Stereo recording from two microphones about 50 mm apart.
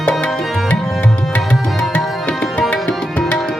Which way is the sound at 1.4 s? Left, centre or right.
Centre.